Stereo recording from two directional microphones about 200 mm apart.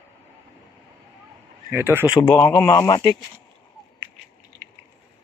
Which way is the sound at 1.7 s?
10° right (ahead or behind).